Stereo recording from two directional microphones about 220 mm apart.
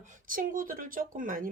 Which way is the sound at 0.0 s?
35° right (ahead or behind).